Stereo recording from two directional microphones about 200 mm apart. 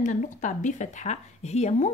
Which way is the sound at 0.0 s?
40° left (ahead or behind).